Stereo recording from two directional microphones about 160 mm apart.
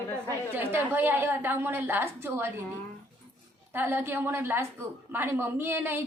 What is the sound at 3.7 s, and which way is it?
A woman's voice, 15° right (ahead or behind).